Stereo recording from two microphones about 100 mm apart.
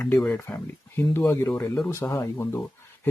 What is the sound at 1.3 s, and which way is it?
Speech, 35° left (ahead or behind).